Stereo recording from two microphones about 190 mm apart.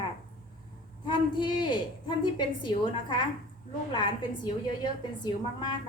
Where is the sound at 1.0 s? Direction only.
25° left (ahead or behind).